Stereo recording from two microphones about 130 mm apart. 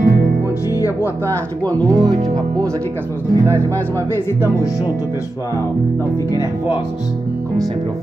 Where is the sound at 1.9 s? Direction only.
30° right (ahead or behind).